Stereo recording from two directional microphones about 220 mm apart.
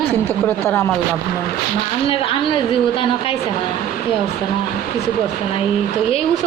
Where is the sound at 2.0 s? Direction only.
25° left (ahead or behind).